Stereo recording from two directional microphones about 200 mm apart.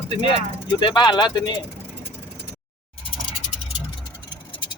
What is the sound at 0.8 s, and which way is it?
Speech, 20° left (ahead or behind).